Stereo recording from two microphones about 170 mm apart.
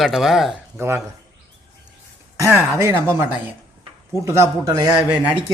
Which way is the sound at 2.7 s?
15° right (ahead or behind).